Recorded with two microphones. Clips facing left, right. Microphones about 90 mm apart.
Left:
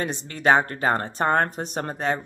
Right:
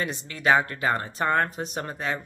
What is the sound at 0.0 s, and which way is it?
Speech, 40° left (ahead or behind).